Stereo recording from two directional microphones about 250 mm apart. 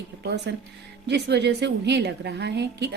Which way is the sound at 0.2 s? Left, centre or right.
Right.